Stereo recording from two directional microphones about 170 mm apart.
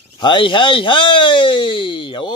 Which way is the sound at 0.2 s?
30° left (ahead or behind).